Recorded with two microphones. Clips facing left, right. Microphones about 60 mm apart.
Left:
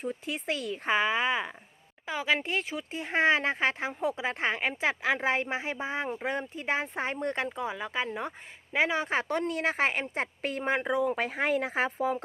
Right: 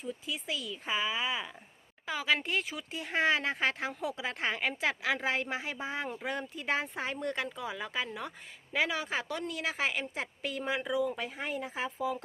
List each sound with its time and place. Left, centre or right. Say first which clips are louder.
0.0 s speech: left 4 dB; left
2.0 s a woman's voice: left 2 dB; left